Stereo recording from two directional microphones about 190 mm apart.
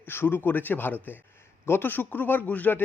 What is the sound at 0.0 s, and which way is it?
A man's voice, 10° left (ahead or behind).